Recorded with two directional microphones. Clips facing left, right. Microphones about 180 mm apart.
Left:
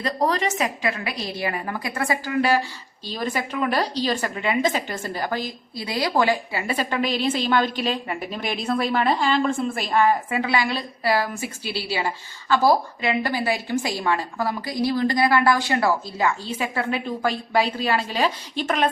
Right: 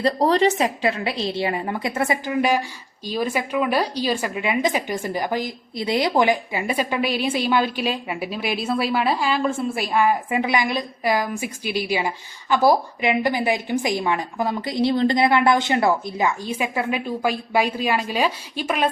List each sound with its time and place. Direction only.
0.0 s a woman's voice: 30° right (ahead or behind); by 18.9 s 10° right (ahead or behind)